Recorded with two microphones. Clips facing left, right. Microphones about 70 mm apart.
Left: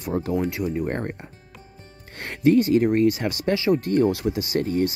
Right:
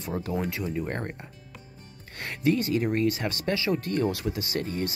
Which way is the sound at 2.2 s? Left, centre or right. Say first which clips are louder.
Left 7 dB; left.